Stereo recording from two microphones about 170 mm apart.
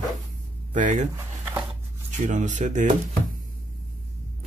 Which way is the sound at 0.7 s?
45° right (ahead or behind).